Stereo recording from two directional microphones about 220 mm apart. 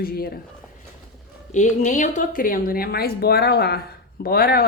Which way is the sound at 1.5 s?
35° left (ahead or behind).